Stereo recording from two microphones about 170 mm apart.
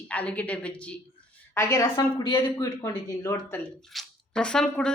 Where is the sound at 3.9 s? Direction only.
Centre (ahead or behind).